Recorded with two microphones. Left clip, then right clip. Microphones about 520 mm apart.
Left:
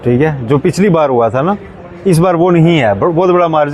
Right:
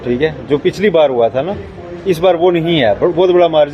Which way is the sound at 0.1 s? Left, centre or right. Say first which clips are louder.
Left 2 dB; left.